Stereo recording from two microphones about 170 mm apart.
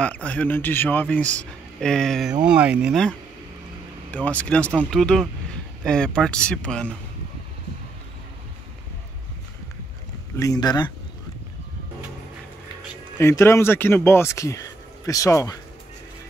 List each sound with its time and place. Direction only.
0.0 s speech: 10° left (ahead or behind)
10.3 s speech: 20° left (ahead or behind)
13.2 s speech: 15° left (ahead or behind)